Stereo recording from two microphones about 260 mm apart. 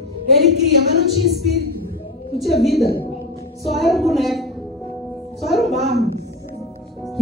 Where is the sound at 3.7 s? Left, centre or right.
Centre.